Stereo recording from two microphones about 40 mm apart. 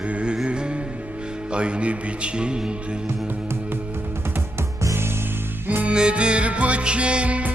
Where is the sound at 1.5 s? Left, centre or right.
Right.